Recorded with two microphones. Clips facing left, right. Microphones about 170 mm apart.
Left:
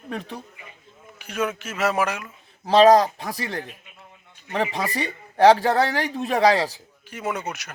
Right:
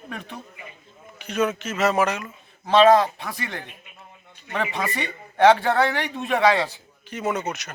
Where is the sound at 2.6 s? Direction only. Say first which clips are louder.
Left 1 dB; 35° left (ahead or behind).